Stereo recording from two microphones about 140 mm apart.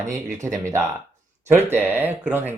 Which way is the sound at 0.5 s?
20° right (ahead or behind).